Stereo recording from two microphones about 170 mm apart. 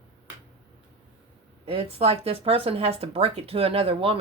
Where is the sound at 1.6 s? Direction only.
35° right (ahead or behind).